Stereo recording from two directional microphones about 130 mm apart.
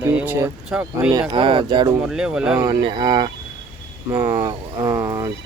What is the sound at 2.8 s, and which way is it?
Speech, 35° right (ahead or behind).